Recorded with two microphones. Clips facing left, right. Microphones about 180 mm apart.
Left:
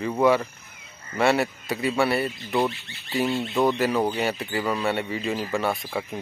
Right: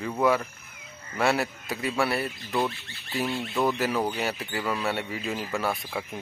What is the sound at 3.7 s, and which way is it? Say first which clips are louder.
Speech: left 4 dB; centre (ahead or behind).